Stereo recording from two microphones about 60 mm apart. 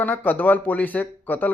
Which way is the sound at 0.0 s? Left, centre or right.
Left.